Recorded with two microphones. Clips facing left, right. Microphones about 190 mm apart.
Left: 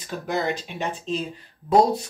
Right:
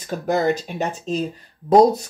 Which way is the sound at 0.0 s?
45° right (ahead or behind).